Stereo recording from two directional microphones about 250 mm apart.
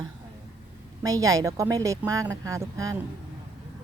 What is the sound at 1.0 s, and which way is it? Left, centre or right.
Speech, centre.